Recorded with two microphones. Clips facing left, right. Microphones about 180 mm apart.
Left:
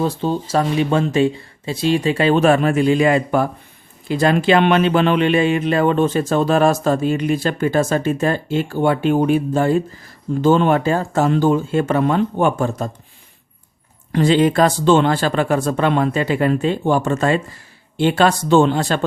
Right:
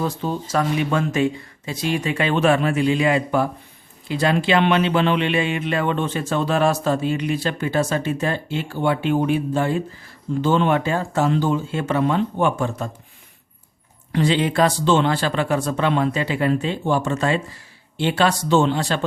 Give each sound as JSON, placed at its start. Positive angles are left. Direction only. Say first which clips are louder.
{"t": 0.0, "sound": "speech", "louder": "left 4 dB", "side_deg": 30}
{"t": 14.1, "sound": "speech", "louder": "left 5 dB", "side_deg": 45}